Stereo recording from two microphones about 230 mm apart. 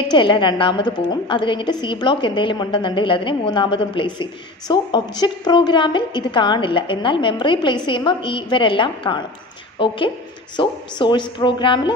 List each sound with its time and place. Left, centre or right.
0.1 s a woman's voice: left